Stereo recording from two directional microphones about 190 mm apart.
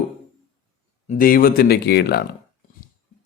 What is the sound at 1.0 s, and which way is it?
Speech, 50° left (ahead or behind).